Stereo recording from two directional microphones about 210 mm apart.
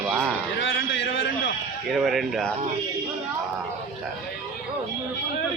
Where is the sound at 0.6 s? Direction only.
65° left (ahead or behind).